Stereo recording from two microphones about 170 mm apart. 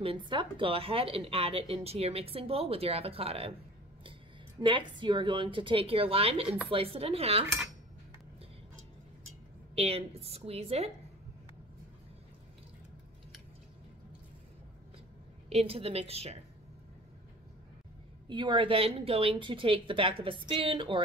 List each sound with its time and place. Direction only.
0.0 s speech: 30° right (ahead or behind)
4.6 s a woman's voice: 30° right (ahead or behind)
9.8 s speech: 35° right (ahead or behind)
15.5 s speech: 35° right (ahead or behind)
18.3 s speech: 25° right (ahead or behind)